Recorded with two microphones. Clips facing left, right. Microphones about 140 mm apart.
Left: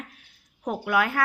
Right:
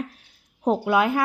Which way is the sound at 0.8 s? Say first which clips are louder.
Right 2 dB; 20° right (ahead or behind).